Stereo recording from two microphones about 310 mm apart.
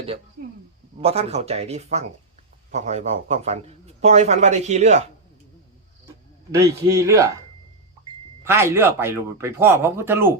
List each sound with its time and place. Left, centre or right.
1.0 s a man's voice: centre
6.5 s speech: centre
8.4 s speech: centre